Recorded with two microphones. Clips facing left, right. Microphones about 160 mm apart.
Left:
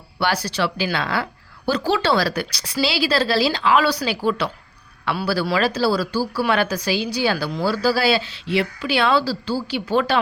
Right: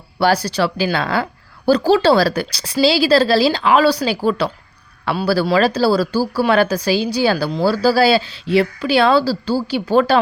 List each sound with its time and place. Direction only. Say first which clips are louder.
0.4 s a woman's voice: right 5 dB; 35° right (ahead or behind)